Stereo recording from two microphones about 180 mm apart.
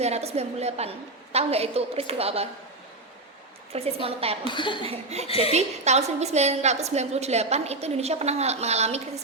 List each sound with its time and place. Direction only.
0.0 s a woman's voice: 35° right (ahead or behind)
3.7 s a woman's voice: 35° right (ahead or behind)
4.4 s speech: 25° left (ahead or behind)
4.8 s a woman's voice: 35° right (ahead or behind)
5.3 s a woman's voice: 35° left (ahead or behind)
5.5 s a woman's voice: 40° right (ahead or behind)